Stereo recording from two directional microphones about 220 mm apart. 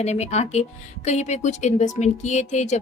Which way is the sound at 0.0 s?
30° left (ahead or behind).